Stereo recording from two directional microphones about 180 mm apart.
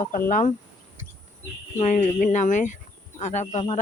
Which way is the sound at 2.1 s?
45° left (ahead or behind).